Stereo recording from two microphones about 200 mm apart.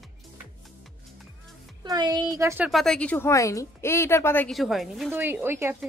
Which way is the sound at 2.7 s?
Centre (ahead or behind).